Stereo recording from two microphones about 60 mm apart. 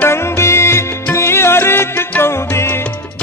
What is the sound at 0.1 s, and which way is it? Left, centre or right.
Music, left.